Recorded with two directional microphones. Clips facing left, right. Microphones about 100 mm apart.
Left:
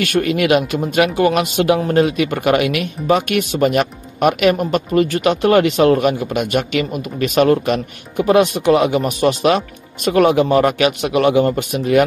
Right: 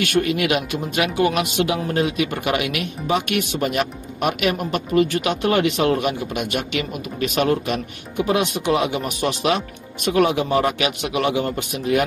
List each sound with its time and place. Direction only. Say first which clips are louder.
0.1 s speech: left 7 dB; 50° left (ahead or behind)